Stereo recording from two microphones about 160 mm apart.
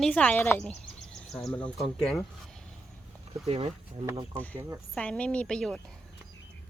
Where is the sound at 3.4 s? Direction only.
40° right (ahead or behind).